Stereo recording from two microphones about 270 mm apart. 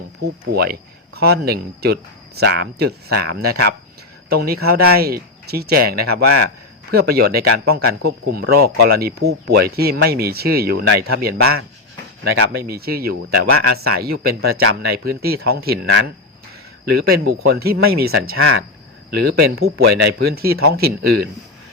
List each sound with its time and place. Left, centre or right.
0.5 s speech: right